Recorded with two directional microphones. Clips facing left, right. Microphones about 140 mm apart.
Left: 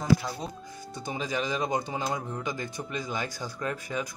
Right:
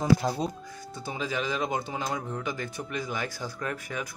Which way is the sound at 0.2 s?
50° right (ahead or behind).